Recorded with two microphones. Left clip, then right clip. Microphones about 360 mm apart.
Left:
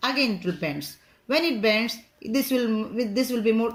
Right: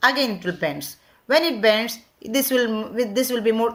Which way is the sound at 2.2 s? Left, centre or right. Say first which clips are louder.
Right 4 dB; right.